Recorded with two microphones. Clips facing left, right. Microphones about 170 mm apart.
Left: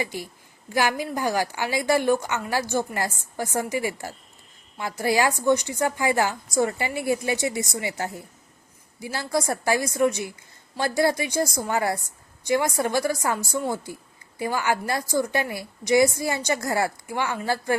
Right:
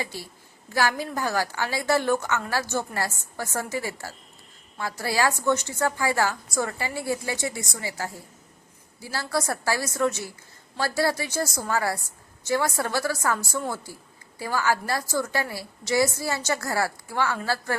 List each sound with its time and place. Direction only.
0.0 s a woman's voice: 15° left (ahead or behind)